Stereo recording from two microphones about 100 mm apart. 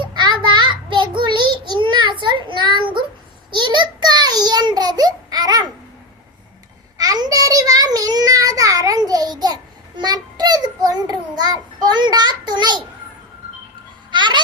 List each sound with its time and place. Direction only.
0.0 s child singing: 45° right (ahead or behind)
3.5 s a sound: 50° right (ahead or behind)
7.0 s child singing: 40° right (ahead or behind)
14.1 s music: 50° right (ahead or behind)